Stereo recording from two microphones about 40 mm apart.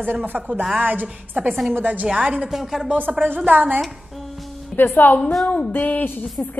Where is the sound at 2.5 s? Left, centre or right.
Centre.